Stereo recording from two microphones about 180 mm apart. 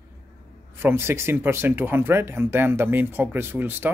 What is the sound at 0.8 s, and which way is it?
Speech, 15° right (ahead or behind).